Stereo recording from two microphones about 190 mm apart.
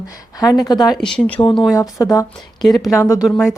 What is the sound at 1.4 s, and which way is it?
Speech, 25° left (ahead or behind).